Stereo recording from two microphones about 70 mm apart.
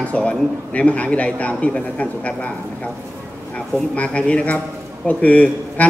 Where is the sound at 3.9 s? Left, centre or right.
Centre.